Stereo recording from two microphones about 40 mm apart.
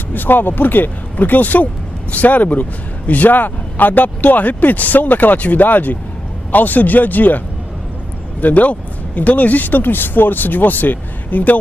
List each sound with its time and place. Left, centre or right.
0.1 s speech: left